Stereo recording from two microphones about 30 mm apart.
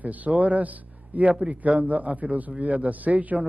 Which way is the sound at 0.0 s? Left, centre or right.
Right.